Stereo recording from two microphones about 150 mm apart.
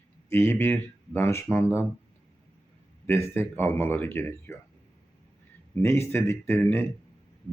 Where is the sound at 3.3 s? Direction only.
15° left (ahead or behind).